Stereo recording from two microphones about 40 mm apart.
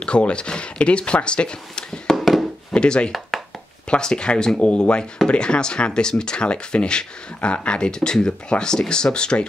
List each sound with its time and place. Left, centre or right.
0.0 s speech: left
2.1 s a sound: centre
2.7 s speech: left